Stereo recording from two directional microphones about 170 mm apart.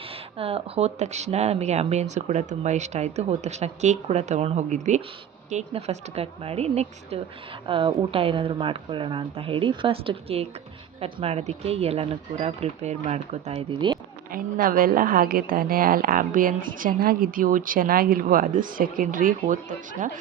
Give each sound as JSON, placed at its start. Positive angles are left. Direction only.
{"t": 0.1, "sound": "a woman's voice", "side_deg": -35}
{"t": 14.3, "sound": "a woman's voice", "side_deg": -55}